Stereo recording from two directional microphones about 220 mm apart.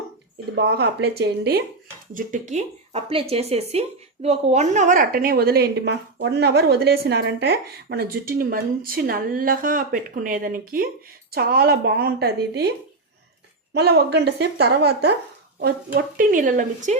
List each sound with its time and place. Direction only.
0.5 s a woman's voice: 50° right (ahead or behind)
2.1 s a woman's voice: 35° right (ahead or behind)
13.7 s a woman's voice: 50° right (ahead or behind)